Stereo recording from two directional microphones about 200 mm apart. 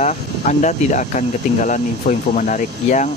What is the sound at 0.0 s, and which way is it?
Speech, 35° left (ahead or behind).